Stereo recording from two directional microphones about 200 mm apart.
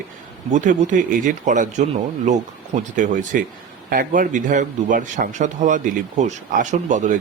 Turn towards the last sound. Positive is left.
turn(degrees=-35)  # may be behind; listen again after turning